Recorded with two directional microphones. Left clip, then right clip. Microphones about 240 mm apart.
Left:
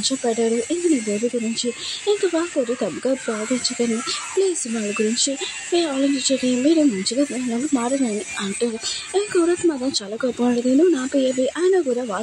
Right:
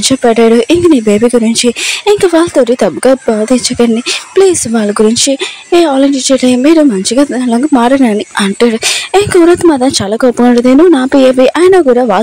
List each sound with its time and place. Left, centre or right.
0.2 s speech: right
4.4 s speech: right